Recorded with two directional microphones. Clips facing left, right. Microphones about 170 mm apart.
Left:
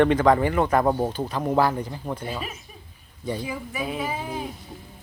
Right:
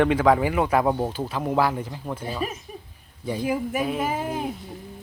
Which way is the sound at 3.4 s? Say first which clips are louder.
Right 6 dB; 55° right (ahead or behind).